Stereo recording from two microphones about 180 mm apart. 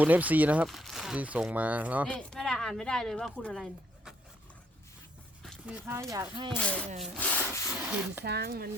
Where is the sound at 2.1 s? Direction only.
5° left (ahead or behind).